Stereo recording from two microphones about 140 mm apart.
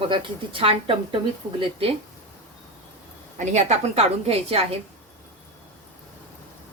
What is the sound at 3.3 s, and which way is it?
A woman's voice, 55° right (ahead or behind).